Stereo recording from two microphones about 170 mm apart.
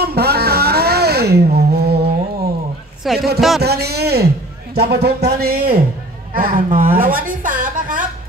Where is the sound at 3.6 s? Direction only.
70° right (ahead or behind).